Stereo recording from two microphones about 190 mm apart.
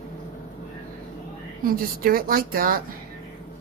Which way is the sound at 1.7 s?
50° right (ahead or behind).